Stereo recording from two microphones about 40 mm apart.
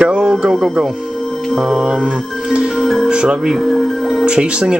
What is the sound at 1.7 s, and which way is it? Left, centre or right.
Music, centre.